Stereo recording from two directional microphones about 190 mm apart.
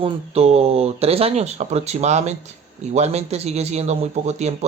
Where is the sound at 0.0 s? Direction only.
30° right (ahead or behind).